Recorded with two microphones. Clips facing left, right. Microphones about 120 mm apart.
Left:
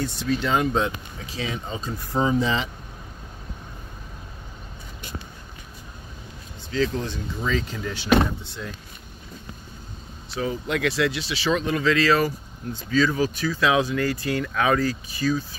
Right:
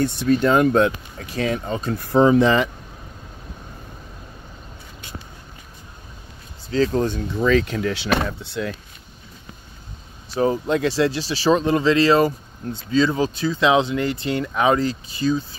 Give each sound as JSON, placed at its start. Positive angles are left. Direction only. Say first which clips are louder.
{"t": 0.0, "sound": "speech", "louder": "right 7 dB", "side_deg": -55}
{"t": 6.7, "sound": "speech", "louder": "right 5 dB", "side_deg": -40}
{"t": 7.3, "sound": "speech", "louder": "right 9 dB", "side_deg": -65}
{"t": 10.3, "sound": "speech", "louder": "right 7 dB", "side_deg": -40}